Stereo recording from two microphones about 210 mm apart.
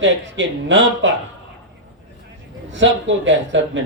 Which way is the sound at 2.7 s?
65° right (ahead or behind).